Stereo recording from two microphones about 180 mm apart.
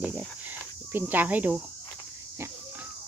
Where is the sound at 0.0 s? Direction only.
10° right (ahead or behind).